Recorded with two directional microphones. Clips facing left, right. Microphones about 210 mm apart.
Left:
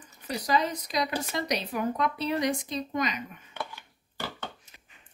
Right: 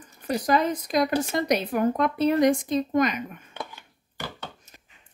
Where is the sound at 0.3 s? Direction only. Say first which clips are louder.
Right 5 dB; 50° right (ahead or behind).